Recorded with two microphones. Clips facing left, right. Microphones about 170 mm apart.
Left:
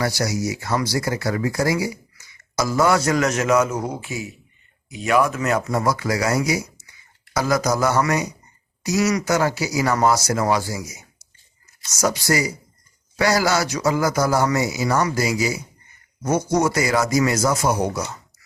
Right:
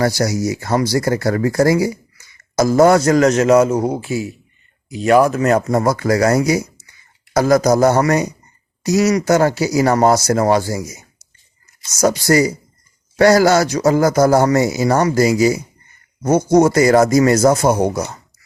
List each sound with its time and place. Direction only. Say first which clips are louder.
0.0 s a man's voice: right 6 dB; 45° right (ahead or behind)